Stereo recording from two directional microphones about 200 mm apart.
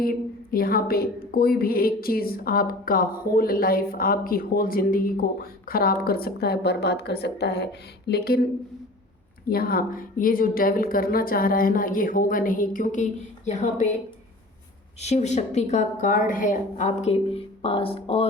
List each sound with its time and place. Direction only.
0.0 s a woman's voice: 45° left (ahead or behind)
9.5 s a woman's voice: 50° left (ahead or behind)
15.0 s a woman's voice: 35° left (ahead or behind)